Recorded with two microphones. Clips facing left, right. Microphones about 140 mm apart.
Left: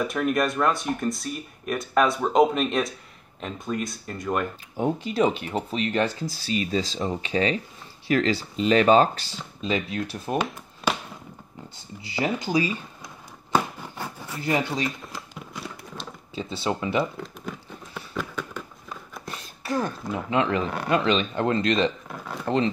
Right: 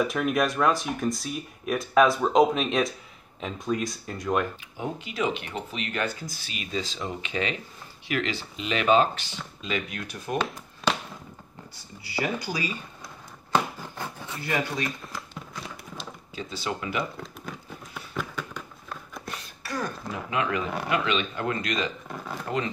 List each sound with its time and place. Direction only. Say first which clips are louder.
0.0 s speech: left 1 dB; centre (ahead or behind)
4.7 s speech: left 8 dB; 40° left (ahead or behind)
10.3 s a sound: left 1 dB; 5° left (ahead or behind)
12.0 s speech: left 3 dB; 20° left (ahead or behind)
14.4 s speech: left 4 dB; 25° left (ahead or behind)
14.9 s a sound: left 2 dB; centre (ahead or behind)
16.3 s speech: left 5 dB; 30° left (ahead or behind)
17.2 s a sound: left 3 dB; centre (ahead or behind)
19.6 s speech: left 5 dB; 25° left (ahead or behind)